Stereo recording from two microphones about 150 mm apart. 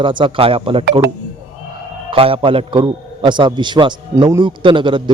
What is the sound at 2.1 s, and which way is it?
A man's voice, 40° right (ahead or behind).